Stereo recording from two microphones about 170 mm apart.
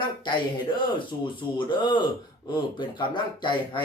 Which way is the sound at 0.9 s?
30° left (ahead or behind).